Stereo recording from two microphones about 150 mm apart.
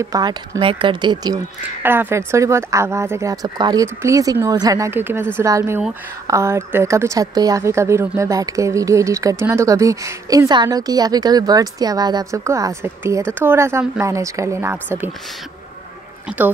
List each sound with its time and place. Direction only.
0.0 s a woman's voice: 25° right (ahead or behind)
1.8 s a woman's voice: 15° right (ahead or behind)
16.3 s speech: 5° right (ahead or behind)